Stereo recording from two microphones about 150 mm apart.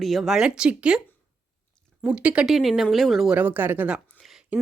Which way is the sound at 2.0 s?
10° right (ahead or behind).